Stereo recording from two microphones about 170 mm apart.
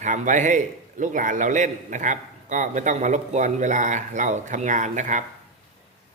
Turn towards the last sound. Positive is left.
turn(degrees=-45)  # may be behind; listen again after turning